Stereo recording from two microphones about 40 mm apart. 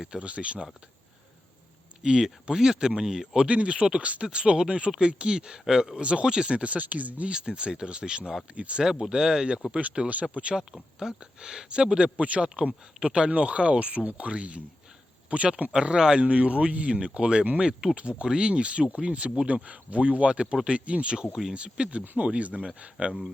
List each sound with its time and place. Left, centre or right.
0.2 s speech: right
2.0 s speech: centre
3.4 s speech: right; by 6.0 s centre
6.0 s speech: right
7.3 s speech: right
8.8 s speech: centre
9.7 s speech: right
10.5 s speech: centre
16.2 s speech: right
17.6 s speech: centre